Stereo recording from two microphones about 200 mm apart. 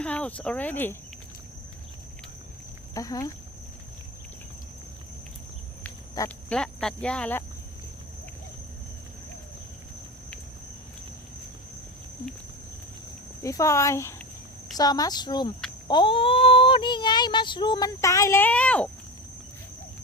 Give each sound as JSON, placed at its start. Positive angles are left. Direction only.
{"t": 0.0, "sound": "speech", "side_deg": 5}
{"t": 2.9, "sound": "speech", "side_deg": 15}
{"t": 5.8, "sound": "speech", "side_deg": 10}
{"t": 13.4, "sound": "speech", "side_deg": 15}